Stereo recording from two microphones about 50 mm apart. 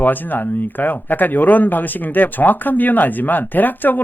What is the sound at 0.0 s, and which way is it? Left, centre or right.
Speech, left.